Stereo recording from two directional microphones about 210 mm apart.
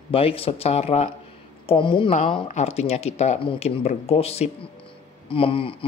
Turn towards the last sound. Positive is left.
turn(degrees=25)  # may be behind; listen again after turning